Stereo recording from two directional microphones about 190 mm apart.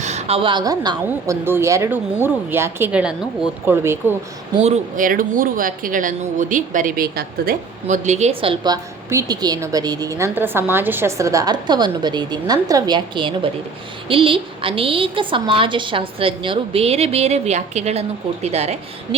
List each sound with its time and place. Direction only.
0.0 s a woman's voice: 35° right (ahead or behind); by 3.9 s 10° right (ahead or behind)
4.9 s speech: 45° right (ahead or behind)